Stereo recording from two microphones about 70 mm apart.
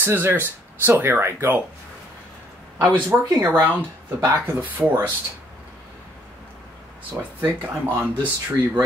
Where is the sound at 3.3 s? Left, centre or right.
Right.